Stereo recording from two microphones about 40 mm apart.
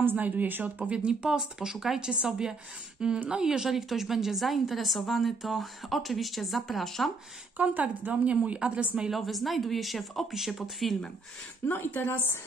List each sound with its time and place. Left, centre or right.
0.0 s speech: right
0.8 s speech: right
1.7 s speech: centre
3.3 s a woman's voice: centre
7.5 s speech: right
9.1 s a woman's voice: centre
11.6 s a woman's voice: left